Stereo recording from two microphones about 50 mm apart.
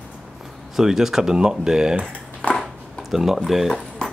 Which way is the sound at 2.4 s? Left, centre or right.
Centre.